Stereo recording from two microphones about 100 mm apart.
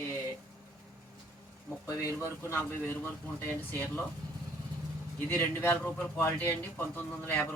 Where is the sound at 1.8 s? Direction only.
35° left (ahead or behind).